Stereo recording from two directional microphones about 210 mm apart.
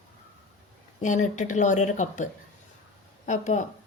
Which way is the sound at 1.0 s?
35° left (ahead or behind).